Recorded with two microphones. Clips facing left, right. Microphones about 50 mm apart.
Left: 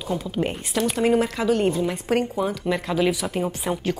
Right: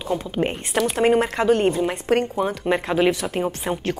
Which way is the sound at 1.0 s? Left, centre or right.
Right.